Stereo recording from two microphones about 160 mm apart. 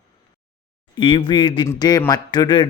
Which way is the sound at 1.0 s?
30° left (ahead or behind).